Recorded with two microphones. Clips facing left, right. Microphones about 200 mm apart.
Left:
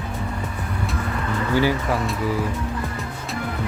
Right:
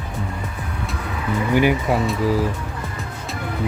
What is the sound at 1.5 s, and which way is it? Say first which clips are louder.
Speech: right 3 dB; 20° right (ahead or behind).